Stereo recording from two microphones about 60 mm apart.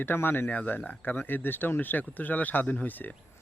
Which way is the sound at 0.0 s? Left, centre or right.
Left.